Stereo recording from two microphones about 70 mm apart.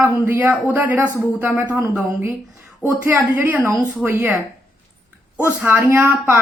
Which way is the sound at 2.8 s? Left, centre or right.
Right.